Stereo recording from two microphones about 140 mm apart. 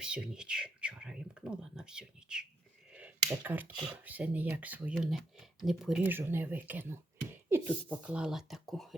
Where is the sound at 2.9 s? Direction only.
10° right (ahead or behind).